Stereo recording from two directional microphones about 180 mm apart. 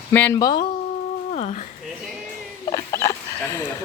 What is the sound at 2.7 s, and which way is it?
Dog, 15° left (ahead or behind).